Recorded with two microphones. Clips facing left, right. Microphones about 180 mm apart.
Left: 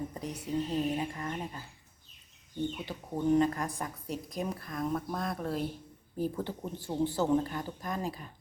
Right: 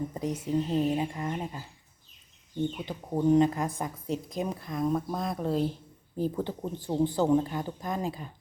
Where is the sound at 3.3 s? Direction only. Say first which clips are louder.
Right 2 dB; 20° right (ahead or behind).